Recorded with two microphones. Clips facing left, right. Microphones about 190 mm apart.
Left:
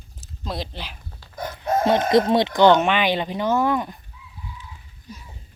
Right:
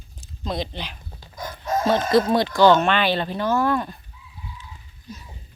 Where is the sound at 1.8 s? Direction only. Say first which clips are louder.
Left 1 dB; 20° left (ahead or behind).